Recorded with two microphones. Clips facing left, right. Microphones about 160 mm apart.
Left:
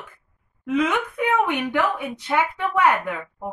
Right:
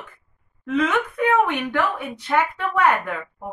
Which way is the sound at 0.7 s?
15° left (ahead or behind).